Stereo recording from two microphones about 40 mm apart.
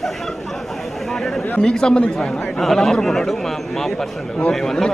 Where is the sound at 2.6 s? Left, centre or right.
Centre.